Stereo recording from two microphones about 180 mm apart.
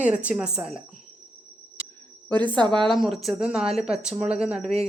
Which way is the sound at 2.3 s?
10° left (ahead or behind).